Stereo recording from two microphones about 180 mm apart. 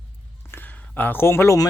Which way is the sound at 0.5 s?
10° left (ahead or behind).